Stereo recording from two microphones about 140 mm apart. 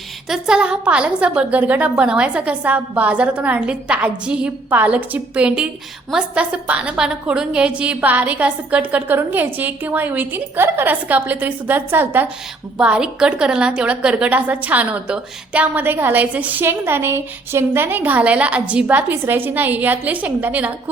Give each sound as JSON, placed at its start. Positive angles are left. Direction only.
{"t": 0.3, "sound": "a woman's voice", "side_deg": -5}